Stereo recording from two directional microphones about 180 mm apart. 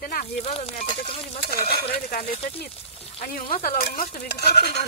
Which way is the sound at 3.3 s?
50° left (ahead or behind).